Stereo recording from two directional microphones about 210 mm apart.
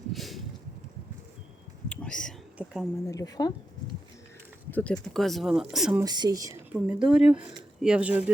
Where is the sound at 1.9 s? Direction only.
5° left (ahead or behind).